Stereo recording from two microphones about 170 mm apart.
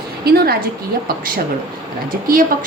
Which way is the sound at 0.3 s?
70° right (ahead or behind).